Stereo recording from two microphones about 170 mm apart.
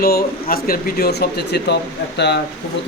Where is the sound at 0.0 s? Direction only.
60° left (ahead or behind); by 2.4 s 85° left.